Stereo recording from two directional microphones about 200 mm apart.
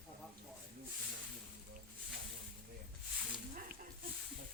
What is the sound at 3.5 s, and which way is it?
Snake, 45° right (ahead or behind).